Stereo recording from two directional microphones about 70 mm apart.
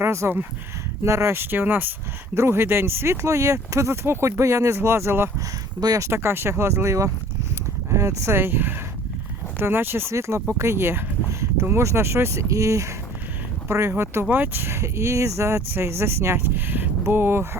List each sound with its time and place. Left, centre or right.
0.0 s speech: right
13.7 s speech: right